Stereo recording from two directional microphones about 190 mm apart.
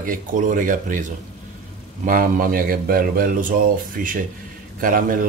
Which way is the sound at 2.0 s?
45° right (ahead or behind).